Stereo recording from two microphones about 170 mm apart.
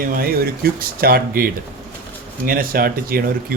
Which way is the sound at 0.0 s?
60° right (ahead or behind).